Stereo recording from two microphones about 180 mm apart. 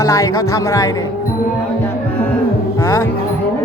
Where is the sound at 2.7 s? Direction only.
15° left (ahead or behind).